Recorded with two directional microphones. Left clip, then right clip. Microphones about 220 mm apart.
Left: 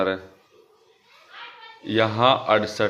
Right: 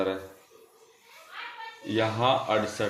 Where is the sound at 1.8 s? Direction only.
30° left (ahead or behind).